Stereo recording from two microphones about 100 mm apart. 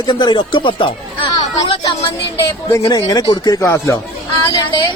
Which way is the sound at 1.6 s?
60° left (ahead or behind).